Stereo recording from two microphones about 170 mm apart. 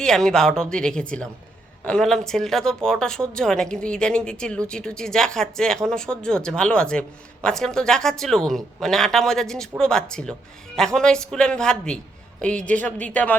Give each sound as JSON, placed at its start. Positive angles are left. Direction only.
{"t": 0.0, "sound": "a woman's voice", "side_deg": 5}